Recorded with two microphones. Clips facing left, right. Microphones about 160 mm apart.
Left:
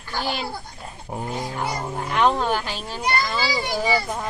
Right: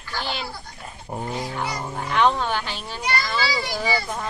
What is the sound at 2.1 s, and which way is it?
Music, 5° left (ahead or behind).